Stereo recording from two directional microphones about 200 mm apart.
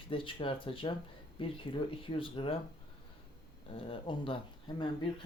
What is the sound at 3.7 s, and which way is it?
Speech, 25° left (ahead or behind).